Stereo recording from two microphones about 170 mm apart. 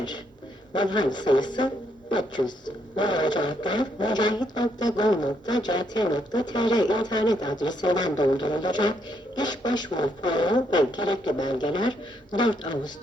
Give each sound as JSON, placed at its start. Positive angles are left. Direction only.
{"t": 0.7, "sound": "speech", "side_deg": 25}